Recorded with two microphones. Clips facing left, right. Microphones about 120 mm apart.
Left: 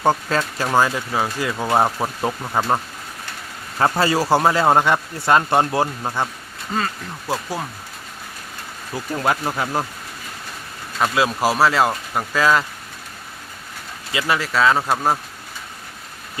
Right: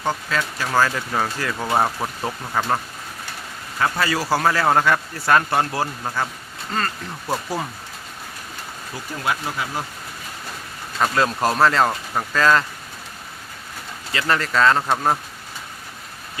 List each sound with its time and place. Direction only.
0.0 s speech: 40° left (ahead or behind)
0.7 s speech: 15° left (ahead or behind)
3.8 s speech: 30° left (ahead or behind)
6.7 s speech: 5° left (ahead or behind)
9.2 s speech: 45° left (ahead or behind)
11.0 s speech: 5° left (ahead or behind)
14.1 s speech: 10° left (ahead or behind)